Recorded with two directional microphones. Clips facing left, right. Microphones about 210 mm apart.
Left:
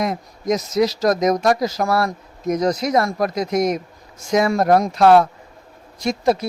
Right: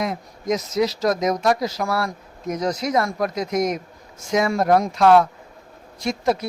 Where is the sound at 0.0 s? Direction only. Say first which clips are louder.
Left 3 dB; 40° left (ahead or behind).